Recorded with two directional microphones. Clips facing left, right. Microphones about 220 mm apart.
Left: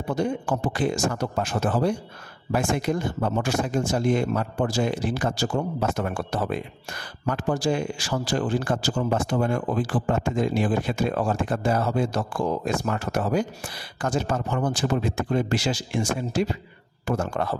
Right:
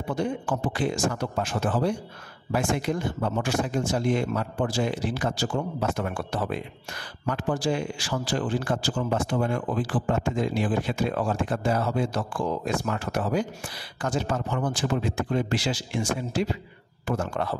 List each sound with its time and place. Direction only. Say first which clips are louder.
0.1 s a man's voice: left 2 dB; 40° left (ahead or behind)